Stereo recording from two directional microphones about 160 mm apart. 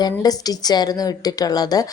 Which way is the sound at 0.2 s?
25° left (ahead or behind).